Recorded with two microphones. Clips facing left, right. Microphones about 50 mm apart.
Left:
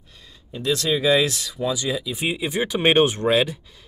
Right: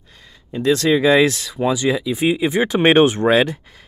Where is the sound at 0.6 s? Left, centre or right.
Right.